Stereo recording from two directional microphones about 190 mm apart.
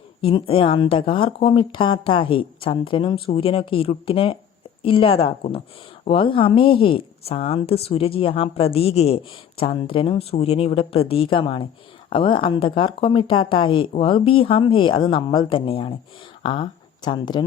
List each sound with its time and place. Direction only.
0.2 s a woman's voice: 30° left (ahead or behind)